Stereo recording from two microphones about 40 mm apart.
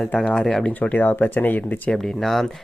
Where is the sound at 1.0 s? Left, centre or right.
Left.